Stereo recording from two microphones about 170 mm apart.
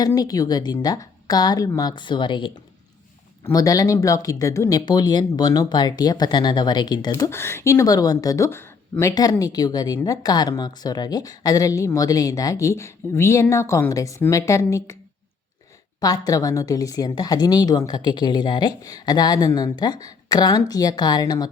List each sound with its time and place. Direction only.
0.0 s speech: 20° left (ahead or behind)
3.5 s speech: 20° left (ahead or behind)
16.0 s speech: 20° left (ahead or behind)